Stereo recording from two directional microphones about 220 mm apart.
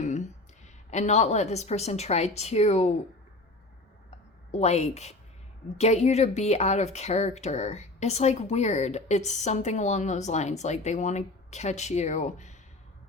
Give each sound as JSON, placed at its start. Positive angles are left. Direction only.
{"t": 0.9, "sound": "a woman's voice", "side_deg": 30}
{"t": 4.5, "sound": "a woman's voice", "side_deg": 30}